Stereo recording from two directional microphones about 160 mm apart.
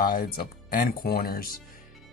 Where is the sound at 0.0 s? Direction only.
65° left (ahead or behind).